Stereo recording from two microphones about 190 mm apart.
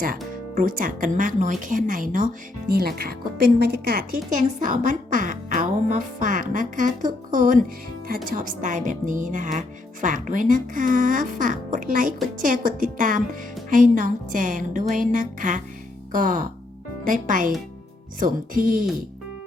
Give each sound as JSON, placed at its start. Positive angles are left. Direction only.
{"t": 0.5, "sound": "speech", "side_deg": -45}
{"t": 4.3, "sound": "speech", "side_deg": -45}